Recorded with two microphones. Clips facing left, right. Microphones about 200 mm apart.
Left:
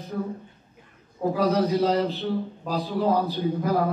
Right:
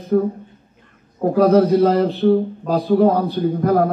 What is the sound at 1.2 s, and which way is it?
A man's voice, 55° right (ahead or behind).